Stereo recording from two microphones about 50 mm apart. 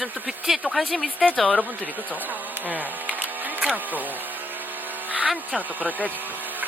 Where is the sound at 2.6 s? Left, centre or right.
Right.